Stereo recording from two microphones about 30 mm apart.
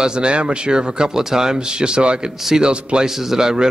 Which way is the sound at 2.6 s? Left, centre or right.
Right.